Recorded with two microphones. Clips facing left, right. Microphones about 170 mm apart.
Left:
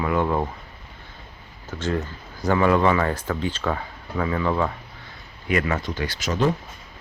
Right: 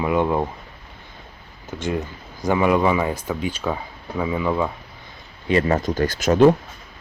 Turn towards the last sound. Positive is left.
turn(degrees=-55)  # may be behind; listen again after turning